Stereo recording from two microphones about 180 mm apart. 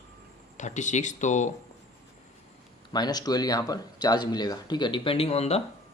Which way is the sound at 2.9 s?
20° left (ahead or behind).